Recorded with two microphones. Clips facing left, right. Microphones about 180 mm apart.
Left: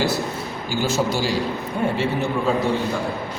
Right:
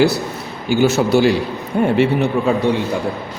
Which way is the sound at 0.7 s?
65° right (ahead or behind).